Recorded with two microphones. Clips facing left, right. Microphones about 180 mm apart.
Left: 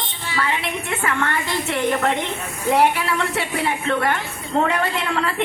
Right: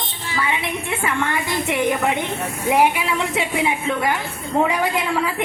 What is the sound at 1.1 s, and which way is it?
A woman's voice, 15° right (ahead or behind).